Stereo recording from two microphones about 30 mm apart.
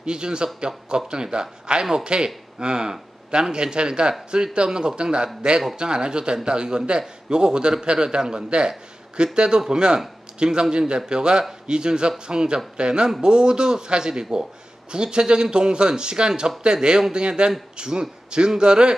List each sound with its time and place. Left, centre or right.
0.0 s a man's voice: right